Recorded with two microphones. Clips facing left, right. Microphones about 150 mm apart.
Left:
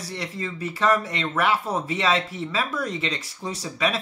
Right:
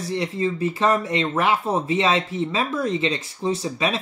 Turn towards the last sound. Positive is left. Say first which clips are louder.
# right 3 dB
turn(degrees=-25)  # may be behind; listen again after turning